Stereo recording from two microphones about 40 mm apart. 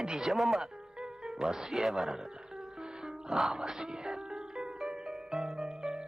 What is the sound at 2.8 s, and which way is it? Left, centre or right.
Music, centre.